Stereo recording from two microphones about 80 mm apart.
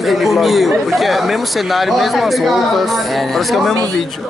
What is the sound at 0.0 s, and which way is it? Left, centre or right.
A man's voice, centre.